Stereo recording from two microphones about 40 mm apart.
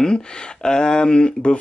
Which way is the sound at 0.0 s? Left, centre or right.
Centre.